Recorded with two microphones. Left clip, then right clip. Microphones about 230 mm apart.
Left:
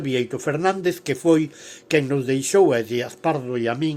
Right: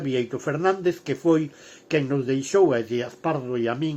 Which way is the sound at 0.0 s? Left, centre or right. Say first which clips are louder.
Left 2 dB; left.